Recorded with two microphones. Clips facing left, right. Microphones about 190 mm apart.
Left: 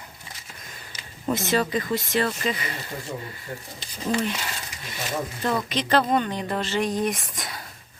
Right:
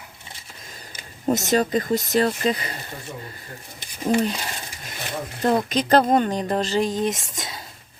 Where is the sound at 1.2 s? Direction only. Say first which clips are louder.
Right 3 dB; 45° right (ahead or behind).